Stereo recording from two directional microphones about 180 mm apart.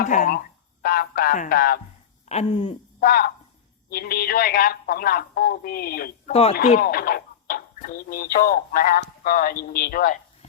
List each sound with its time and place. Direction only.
0.0 s speech: 45° left (ahead or behind)
2.3 s a sound: 35° left (ahead or behind)
3.0 s speech: 55° left (ahead or behind)